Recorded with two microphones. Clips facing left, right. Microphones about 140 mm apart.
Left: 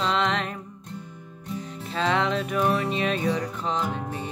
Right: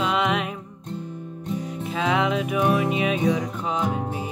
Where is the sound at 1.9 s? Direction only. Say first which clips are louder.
Right 1 dB; 5° right (ahead or behind).